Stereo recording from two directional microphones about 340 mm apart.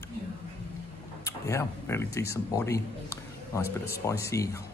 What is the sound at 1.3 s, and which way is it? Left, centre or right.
Speech, centre.